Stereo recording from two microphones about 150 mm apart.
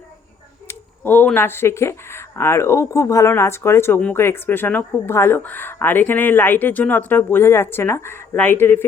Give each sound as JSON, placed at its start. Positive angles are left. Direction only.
{"t": 0.7, "sound": "speech", "side_deg": 10}